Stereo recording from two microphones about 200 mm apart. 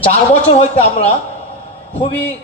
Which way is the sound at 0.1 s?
30° left (ahead or behind).